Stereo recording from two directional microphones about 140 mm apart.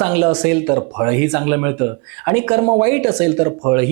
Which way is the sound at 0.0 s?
15° right (ahead or behind).